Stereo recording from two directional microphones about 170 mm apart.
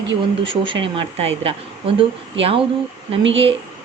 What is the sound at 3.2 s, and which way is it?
Speech, 90° right.